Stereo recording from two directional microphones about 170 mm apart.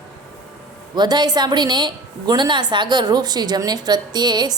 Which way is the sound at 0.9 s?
25° right (ahead or behind).